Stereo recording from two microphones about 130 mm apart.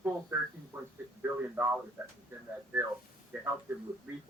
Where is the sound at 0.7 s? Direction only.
15° right (ahead or behind).